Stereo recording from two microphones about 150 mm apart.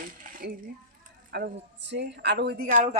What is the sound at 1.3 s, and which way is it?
Speech, 90° right.